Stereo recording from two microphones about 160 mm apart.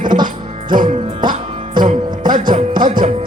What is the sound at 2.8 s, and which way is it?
Music, 60° right (ahead or behind).